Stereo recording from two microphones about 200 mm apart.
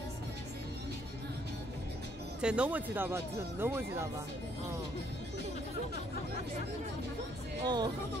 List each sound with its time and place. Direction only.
2.4 s speech: 5° right (ahead or behind)
7.6 s speech: 20° right (ahead or behind)